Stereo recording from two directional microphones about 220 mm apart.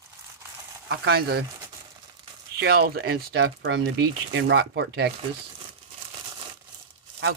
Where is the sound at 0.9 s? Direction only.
45° right (ahead or behind).